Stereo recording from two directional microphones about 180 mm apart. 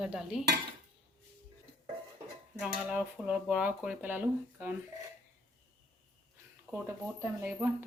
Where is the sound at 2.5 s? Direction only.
5° right (ahead or behind).